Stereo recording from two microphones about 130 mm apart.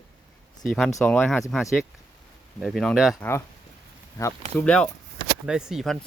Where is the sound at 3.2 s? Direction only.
20° left (ahead or behind).